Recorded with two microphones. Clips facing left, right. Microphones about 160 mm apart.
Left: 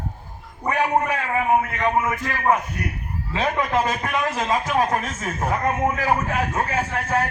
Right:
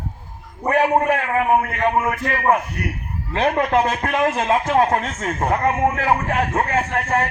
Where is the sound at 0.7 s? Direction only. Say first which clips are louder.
Right 4 dB; 50° right (ahead or behind).